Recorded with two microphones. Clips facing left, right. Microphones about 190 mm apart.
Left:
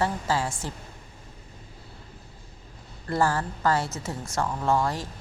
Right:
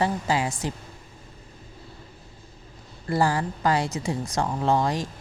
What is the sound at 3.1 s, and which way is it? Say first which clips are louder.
Speech: right 2 dB; 15° right (ahead or behind).